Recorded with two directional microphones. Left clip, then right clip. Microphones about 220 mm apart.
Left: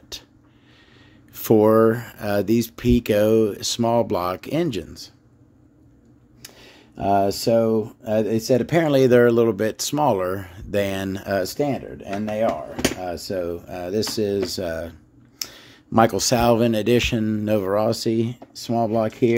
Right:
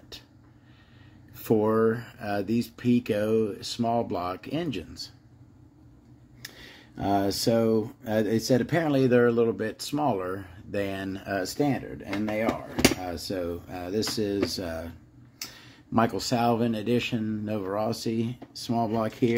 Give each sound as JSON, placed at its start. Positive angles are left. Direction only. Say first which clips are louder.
{"t": 1.4, "sound": "speech", "louder": "left 8 dB", "side_deg": 50}
{"t": 6.4, "sound": "speech", "louder": "even", "side_deg": 25}